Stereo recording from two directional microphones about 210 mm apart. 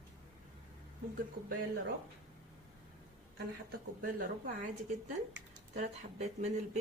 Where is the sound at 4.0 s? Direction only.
45° right (ahead or behind).